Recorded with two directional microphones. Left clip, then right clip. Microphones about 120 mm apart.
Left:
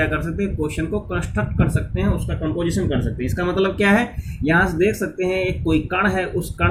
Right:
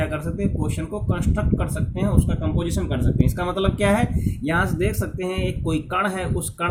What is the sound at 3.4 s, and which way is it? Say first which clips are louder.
Speech: left 5 dB; 50° right (ahead or behind).